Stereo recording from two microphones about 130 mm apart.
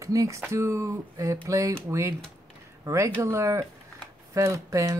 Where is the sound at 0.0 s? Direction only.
25° right (ahead or behind).